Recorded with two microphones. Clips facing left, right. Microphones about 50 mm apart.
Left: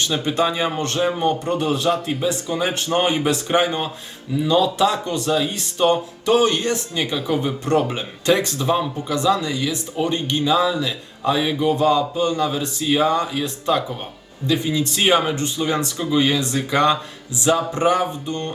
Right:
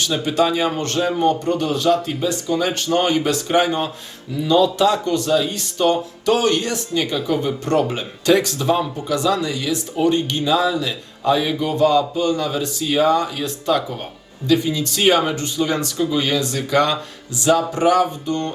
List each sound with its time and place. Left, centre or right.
0.0 s speech: left